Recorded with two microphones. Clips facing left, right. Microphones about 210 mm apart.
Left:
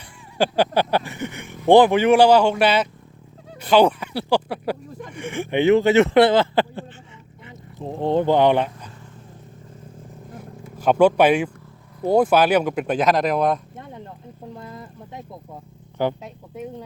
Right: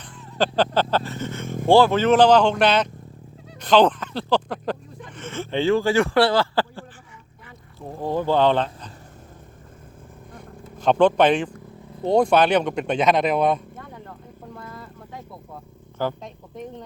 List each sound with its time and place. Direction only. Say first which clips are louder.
0.3 s speech: left 1 dB; 10° left (ahead or behind)
10.3 s vehicle: left 2 dB; 10° left (ahead or behind)
12.0 s speech: left 1 dB; 5° left (ahead or behind)
13.7 s a sound: left 2 dB; 20° left (ahead or behind)
14.5 s vehicle: even; 20° left (ahead or behind)
16.2 s speech: left 2 dB; 10° left (ahead or behind)